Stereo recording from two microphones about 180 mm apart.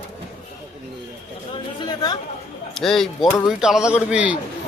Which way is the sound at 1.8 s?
25° left (ahead or behind).